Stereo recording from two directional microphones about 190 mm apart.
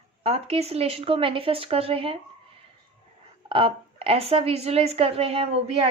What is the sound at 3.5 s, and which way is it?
A woman's voice, 25° right (ahead or behind).